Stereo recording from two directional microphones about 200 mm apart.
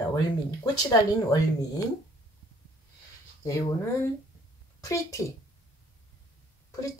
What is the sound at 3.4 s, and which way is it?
Speech, 15° left (ahead or behind).